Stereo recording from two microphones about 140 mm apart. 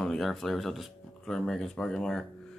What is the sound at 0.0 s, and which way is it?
Speech, 5° left (ahead or behind).